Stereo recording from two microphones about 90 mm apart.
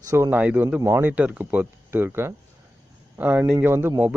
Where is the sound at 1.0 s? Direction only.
15° right (ahead or behind).